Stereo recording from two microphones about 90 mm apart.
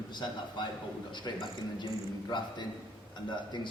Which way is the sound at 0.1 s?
55° left (ahead or behind).